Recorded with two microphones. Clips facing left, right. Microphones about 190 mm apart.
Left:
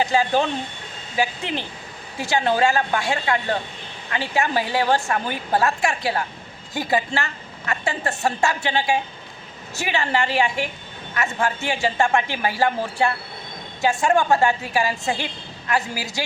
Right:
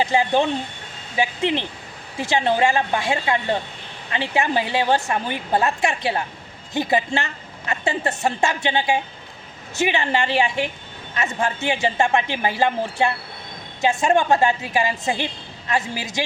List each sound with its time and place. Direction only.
0.1 s a woman's voice: 20° right (ahead or behind)
2.3 s a woman's voice: 20° right (ahead or behind)